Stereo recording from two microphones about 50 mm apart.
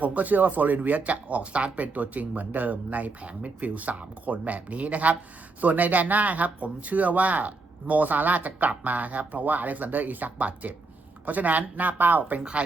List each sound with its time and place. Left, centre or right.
0.0 s speech: right
12.4 s a woman's voice: centre